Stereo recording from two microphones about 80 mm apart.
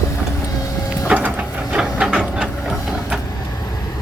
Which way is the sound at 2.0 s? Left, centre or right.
Centre.